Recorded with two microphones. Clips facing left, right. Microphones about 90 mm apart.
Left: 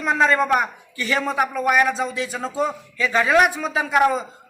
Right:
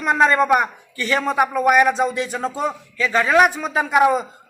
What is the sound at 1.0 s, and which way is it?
Speech, 15° left (ahead or behind).